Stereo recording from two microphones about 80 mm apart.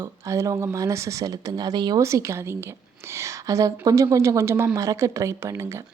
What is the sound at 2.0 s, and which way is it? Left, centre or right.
Speech, right.